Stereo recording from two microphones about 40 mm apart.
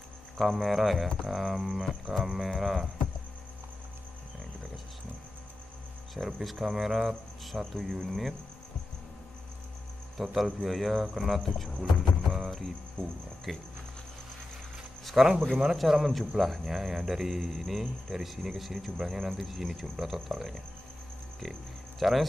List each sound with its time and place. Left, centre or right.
0.4 s speech: centre
6.1 s speech: centre
10.1 s speech: centre
13.0 s speech: left
13.5 s speech: centre
15.2 s speech: centre
22.0 s speech: centre